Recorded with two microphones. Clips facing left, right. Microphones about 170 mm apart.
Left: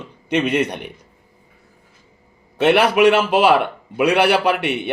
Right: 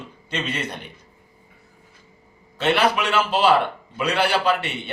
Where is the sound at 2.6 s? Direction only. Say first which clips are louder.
Left 7 dB; 60° left (ahead or behind).